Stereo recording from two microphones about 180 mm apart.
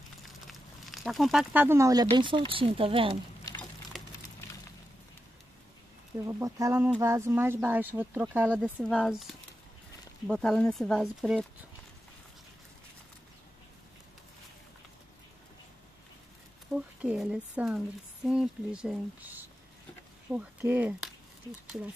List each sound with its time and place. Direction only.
0.2 s a sound: centre (ahead or behind); by 2.0 s 20° right (ahead or behind)
2.0 s speech: 25° right (ahead or behind)
3.9 s a sound: centre (ahead or behind)
6.1 s speech: 20° right (ahead or behind)
8.8 s speech: centre (ahead or behind)
16.7 s speech: 5° right (ahead or behind)